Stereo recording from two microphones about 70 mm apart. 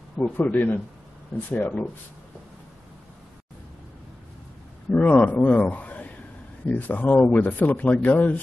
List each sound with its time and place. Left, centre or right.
0.2 s speech: left
4.9 s a man's voice: left